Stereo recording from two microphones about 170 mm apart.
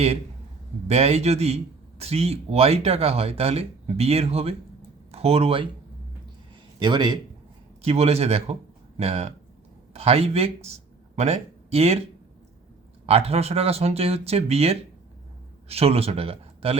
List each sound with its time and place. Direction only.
0.9 s a man's voice: 40° right (ahead or behind)
6.7 s speech: 25° right (ahead or behind)
7.8 s a man's voice: 35° right (ahead or behind)
13.1 s a man's voice: 35° right (ahead or behind)